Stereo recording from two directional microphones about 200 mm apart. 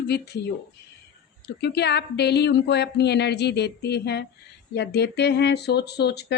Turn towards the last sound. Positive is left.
turn(degrees=55)  # may be behind; listen again after turning